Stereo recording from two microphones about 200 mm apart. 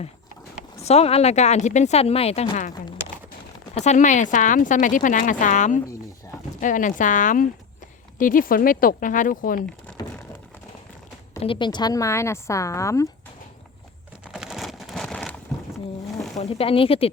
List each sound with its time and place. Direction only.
0.8 s speech: 30° left (ahead or behind)
3.8 s speech: 35° left (ahead or behind)
10.0 s a sound: 20° left (ahead or behind)
11.4 s speech: 20° left (ahead or behind)
14.3 s a sound: centre (ahead or behind)
16.4 s speech: 30° left (ahead or behind)